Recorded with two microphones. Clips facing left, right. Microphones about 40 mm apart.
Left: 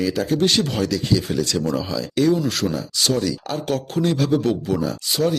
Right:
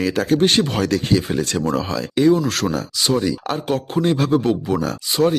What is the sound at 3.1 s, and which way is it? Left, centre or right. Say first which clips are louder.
Speech: right 3 dB; right.